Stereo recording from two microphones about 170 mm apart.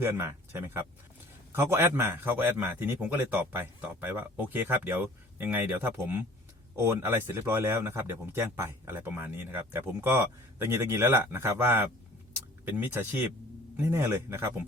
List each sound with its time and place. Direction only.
0.0 s speech: 15° right (ahead or behind)